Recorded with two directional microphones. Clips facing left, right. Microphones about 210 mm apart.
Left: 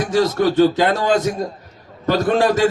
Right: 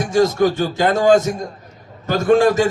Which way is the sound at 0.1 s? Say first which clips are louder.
Right 3 dB; 45° right (ahead or behind).